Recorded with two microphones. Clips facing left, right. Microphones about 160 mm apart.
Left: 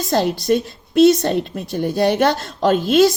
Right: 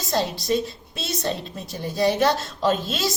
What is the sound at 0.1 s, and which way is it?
A woman's voice, 55° left (ahead or behind).